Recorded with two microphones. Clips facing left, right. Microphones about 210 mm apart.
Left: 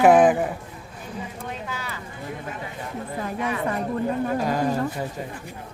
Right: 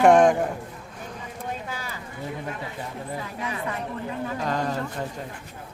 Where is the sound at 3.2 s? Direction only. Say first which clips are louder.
Left 5 dB; 45° left (ahead or behind).